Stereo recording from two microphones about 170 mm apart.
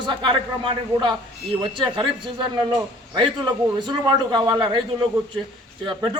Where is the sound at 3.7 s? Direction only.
25° right (ahead or behind).